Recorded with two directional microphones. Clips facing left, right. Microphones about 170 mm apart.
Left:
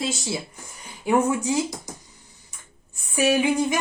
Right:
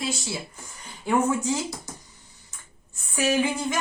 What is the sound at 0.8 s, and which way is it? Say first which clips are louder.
Speech: left 2 dB; 15° left (ahead or behind).